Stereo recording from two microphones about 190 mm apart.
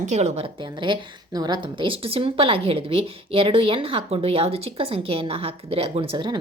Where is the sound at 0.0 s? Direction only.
40° right (ahead or behind).